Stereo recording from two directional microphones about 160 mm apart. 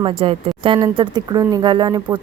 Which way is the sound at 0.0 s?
35° right (ahead or behind).